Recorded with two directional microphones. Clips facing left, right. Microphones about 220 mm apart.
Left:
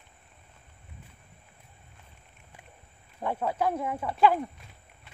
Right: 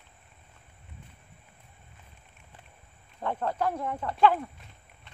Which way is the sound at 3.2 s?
10° left (ahead or behind).